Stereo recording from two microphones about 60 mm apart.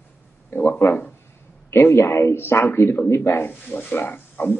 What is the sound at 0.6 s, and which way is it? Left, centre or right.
Speech, left.